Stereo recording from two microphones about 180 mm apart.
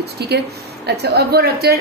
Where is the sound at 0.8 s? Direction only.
65° right (ahead or behind).